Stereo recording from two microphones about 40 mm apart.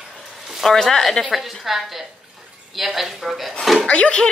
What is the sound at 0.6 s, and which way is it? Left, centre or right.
Speech, centre.